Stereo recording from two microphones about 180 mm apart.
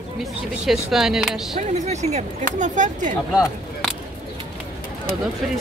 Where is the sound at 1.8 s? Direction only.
40° right (ahead or behind).